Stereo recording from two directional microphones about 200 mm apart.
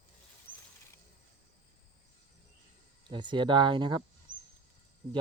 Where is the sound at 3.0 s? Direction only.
25° right (ahead or behind).